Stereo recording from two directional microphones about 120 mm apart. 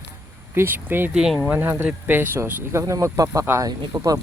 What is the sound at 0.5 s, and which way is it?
Speech, 15° right (ahead or behind).